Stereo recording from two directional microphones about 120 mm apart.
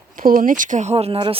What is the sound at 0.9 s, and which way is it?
Speech, 55° right (ahead or behind).